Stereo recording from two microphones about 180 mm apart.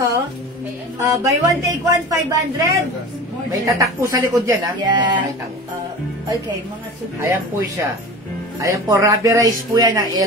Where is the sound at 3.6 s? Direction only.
20° right (ahead or behind).